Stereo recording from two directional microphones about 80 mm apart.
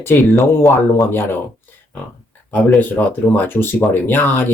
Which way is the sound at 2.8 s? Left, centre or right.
Left.